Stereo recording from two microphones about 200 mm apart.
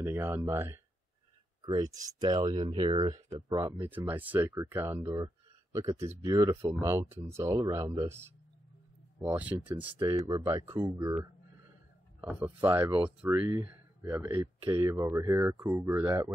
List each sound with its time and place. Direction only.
0.0 s speech: 10° right (ahead or behind)
9.8 s speech: 20° right (ahead or behind)
12.2 s speech: 10° right (ahead or behind)